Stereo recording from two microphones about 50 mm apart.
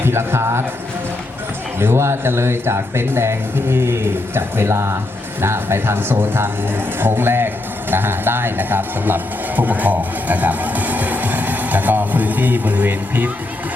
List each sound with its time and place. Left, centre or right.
0.0 s speech: right
1.8 s speech: right
5.4 s speech: right